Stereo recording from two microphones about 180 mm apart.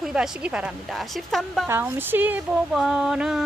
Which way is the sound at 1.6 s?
15° right (ahead or behind).